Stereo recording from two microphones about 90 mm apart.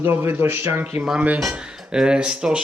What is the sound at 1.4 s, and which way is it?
Speech, 5° right (ahead or behind).